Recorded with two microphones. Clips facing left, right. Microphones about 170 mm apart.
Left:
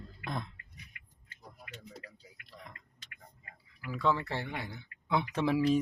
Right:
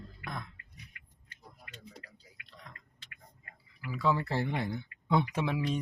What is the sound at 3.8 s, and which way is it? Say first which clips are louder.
Speech: even; 5° right (ahead or behind).